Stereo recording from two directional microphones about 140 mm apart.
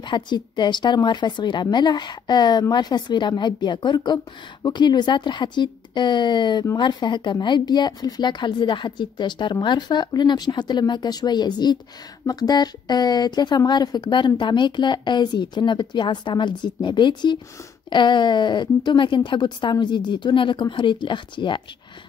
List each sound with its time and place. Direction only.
0.0 s speech: 35° left (ahead or behind)